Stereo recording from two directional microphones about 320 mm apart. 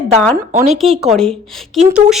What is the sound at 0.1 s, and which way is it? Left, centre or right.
Speech, centre.